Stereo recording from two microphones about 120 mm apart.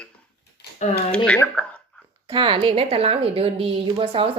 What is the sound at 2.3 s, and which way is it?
A woman's voice, 45° right (ahead or behind).